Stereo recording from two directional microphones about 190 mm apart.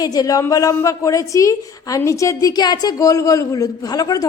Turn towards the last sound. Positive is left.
turn(degrees=20)  # may be behind; listen again after turning